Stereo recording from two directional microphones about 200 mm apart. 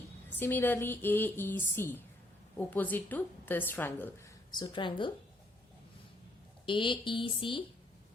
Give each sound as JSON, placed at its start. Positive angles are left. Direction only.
{"t": 0.3, "sound": "a woman's voice", "side_deg": 10}
{"t": 6.7, "sound": "speech", "side_deg": 25}